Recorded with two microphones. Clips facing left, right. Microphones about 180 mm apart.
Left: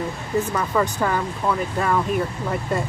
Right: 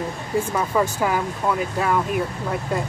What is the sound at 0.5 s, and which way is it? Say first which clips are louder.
Speech: right 1 dB; 10° right (ahead or behind).